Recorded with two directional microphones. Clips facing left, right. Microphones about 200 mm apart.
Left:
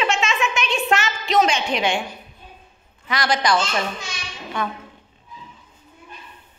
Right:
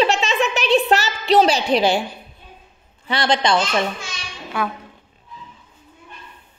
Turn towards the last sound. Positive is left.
turn(degrees=-5)  # may be behind; listen again after turning